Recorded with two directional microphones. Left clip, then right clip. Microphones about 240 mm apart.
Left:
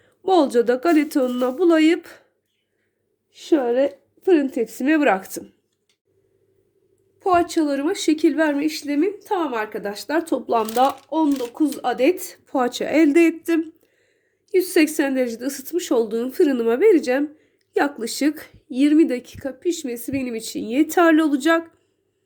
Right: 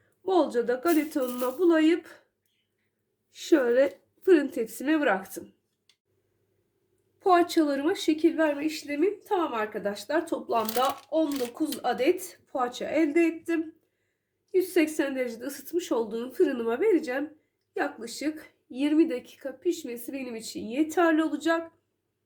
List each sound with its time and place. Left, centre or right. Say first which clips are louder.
0.2 s speech: left 8 dB; left
3.3 s a woman's voice: left 3 dB; centre; by 5.5 s left
7.2 s speech: left 4 dB; centre
7.9 s speech: left 8 dB; left
11.1 s a woman's voice: left 6 dB; left
12.2 s speech: left 8 dB; left